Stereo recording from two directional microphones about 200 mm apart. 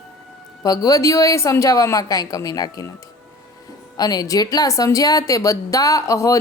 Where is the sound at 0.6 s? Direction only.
20° left (ahead or behind).